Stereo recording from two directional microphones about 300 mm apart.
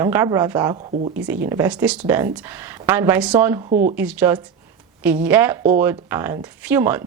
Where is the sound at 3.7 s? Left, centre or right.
Right.